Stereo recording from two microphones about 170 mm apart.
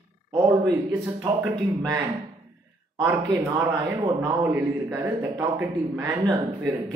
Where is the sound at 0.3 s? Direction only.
25° right (ahead or behind).